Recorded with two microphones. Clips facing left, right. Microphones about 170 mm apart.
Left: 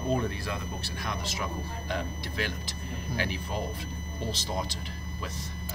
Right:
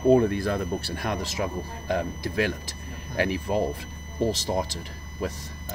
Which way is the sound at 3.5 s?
75° right (ahead or behind).